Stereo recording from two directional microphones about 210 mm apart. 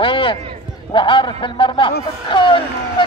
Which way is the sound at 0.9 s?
25° left (ahead or behind).